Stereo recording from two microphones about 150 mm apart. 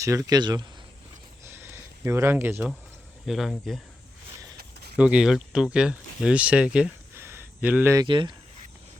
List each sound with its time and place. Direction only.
0.0 s speech: 20° right (ahead or behind)
1.5 s a sound: 15° right (ahead or behind)
3.2 s speech: centre (ahead or behind)
4.9 s speech: 5° right (ahead or behind)
7.1 s a sound: 15° right (ahead or behind)
7.9 s speech: 30° right (ahead or behind)